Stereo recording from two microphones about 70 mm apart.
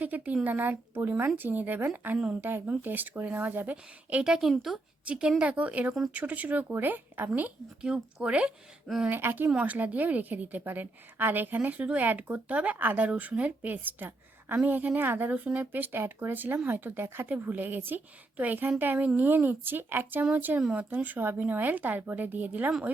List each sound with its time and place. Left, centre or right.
0.0 s a woman's voice: right
4.2 s speech: centre
5.0 s a woman's voice: centre
7.8 s speech: centre
9.0 s a woman's voice: right